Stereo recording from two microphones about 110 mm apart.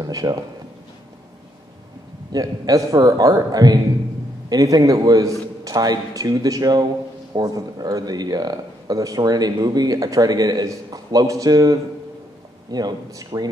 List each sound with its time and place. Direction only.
0.0 s speech: 35° right (ahead or behind)
2.3 s speech: 30° right (ahead or behind)